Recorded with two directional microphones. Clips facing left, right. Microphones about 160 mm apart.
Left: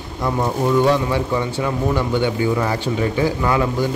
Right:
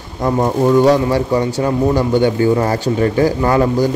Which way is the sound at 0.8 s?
40° right (ahead or behind).